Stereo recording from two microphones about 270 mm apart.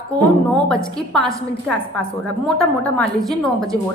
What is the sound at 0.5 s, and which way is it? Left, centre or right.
A woman's voice, centre.